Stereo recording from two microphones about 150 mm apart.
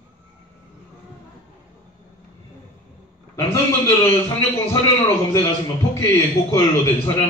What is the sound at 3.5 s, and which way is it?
A man's voice, 20° left (ahead or behind).